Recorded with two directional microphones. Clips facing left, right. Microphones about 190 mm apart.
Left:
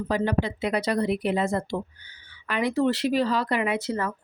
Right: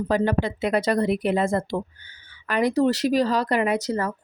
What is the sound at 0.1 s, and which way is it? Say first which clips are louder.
Speech: right 2 dB; 50° right (ahead or behind).